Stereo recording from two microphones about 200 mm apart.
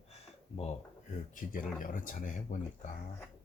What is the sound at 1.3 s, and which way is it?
Speech, 40° left (ahead or behind).